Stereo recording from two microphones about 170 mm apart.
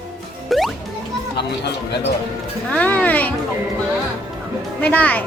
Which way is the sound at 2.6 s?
10° left (ahead or behind).